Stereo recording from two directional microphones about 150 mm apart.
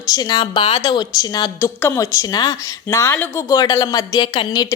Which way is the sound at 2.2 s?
25° left (ahead or behind).